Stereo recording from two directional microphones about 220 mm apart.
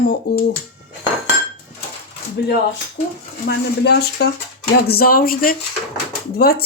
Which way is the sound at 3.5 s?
45° left (ahead or behind).